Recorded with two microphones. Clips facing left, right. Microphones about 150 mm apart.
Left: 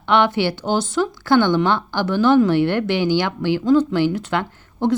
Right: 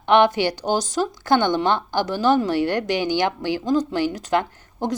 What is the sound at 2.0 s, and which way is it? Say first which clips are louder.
Speech: left 6 dB; 40° right (ahead or behind).